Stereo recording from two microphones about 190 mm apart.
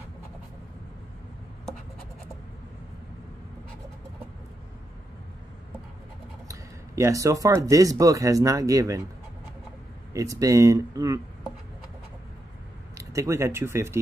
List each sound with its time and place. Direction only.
6.4 s speech: 15° right (ahead or behind)
10.1 s speech: 15° right (ahead or behind)
12.9 s speech: 15° right (ahead or behind)